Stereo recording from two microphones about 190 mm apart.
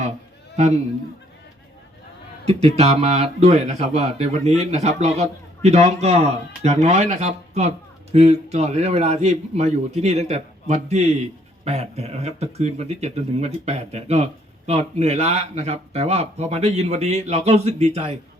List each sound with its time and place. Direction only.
0.5 s a man's voice: 35° right (ahead or behind)
2.4 s a man's voice: 35° right (ahead or behind)